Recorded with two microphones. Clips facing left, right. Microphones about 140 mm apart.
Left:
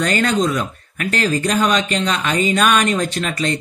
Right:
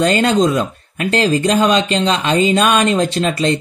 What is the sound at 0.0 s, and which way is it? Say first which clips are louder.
Speech: right 4 dB; 25° right (ahead or behind).